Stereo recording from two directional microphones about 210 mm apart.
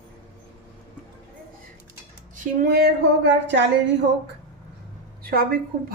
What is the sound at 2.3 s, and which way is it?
A woman's voice, 45° right (ahead or behind).